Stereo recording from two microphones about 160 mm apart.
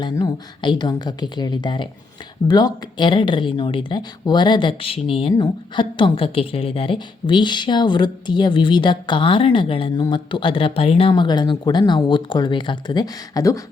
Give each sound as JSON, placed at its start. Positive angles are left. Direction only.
{"t": 0.0, "sound": "speech", "side_deg": 30}